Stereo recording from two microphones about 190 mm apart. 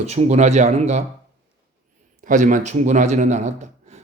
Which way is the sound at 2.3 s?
40° right (ahead or behind).